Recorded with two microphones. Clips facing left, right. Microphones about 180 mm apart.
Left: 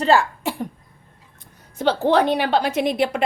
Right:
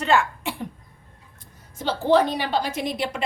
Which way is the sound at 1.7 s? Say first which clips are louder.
Left 2 dB; 65° left (ahead or behind).